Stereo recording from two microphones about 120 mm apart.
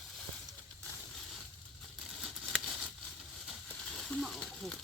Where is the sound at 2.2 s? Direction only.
5° right (ahead or behind).